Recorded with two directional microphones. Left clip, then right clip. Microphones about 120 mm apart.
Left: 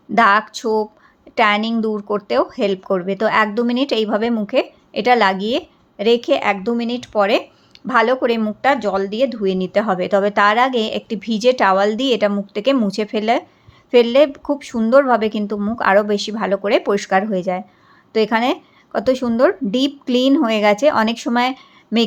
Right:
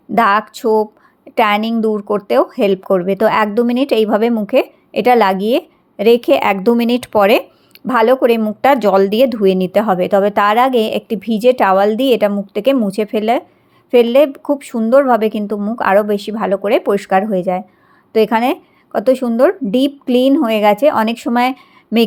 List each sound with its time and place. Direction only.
0.1 s a woman's voice: 30° right (ahead or behind); by 7.4 s 50° right (ahead or behind)
7.9 s speech: 35° right (ahead or behind)
8.6 s a woman's voice: 50° right (ahead or behind); by 22.1 s 20° right (ahead or behind)